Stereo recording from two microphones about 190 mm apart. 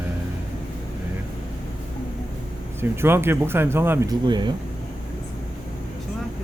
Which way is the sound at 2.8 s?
10° right (ahead or behind).